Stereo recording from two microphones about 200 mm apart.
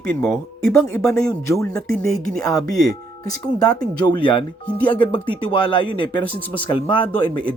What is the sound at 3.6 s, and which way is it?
Speech, 20° left (ahead or behind).